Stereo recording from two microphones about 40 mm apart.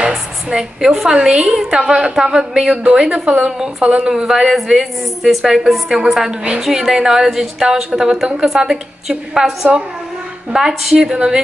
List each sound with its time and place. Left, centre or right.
0.1 s a sound: centre
1.0 s a woman's voice: centre
4.1 s a woman's voice: centre